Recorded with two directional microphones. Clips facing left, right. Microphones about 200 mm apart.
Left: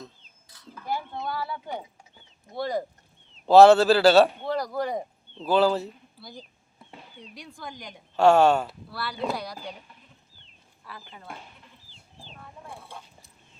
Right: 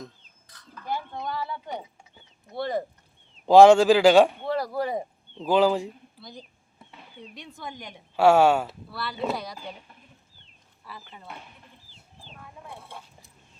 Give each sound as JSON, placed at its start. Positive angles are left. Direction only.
{"t": 0.4, "sound": "a sound", "side_deg": 10}
{"t": 1.2, "sound": "speech", "side_deg": 5}
{"t": 3.4, "sound": "a man's voice", "side_deg": -15}
{"t": 4.4, "sound": "speech", "side_deg": -5}
{"t": 6.1, "sound": "speech", "side_deg": 5}
{"t": 7.3, "sound": "speech", "side_deg": -25}
{"t": 8.1, "sound": "a man's voice", "side_deg": -10}
{"t": 8.9, "sound": "speech", "side_deg": 0}
{"t": 12.3, "sound": "a sound", "side_deg": 0}